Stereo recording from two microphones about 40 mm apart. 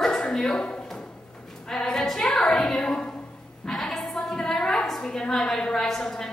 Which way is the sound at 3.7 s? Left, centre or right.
Centre.